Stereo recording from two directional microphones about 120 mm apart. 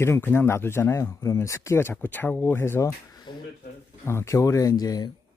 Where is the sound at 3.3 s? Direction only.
40° left (ahead or behind).